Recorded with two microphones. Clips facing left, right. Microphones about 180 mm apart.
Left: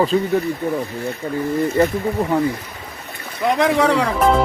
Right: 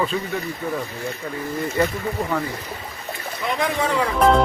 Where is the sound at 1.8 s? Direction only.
30° left (ahead or behind).